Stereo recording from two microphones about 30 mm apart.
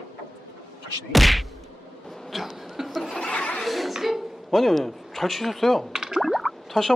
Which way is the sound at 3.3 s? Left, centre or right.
Left.